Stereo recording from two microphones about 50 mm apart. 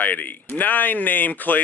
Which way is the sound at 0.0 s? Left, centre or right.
Left.